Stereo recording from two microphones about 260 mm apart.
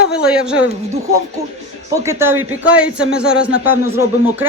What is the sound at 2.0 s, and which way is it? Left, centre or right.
Speech, centre.